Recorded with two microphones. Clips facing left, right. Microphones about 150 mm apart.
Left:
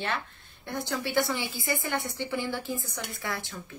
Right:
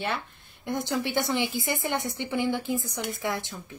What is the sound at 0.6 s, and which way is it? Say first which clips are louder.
A woman's voice: right 4 dB; 20° right (ahead or behind).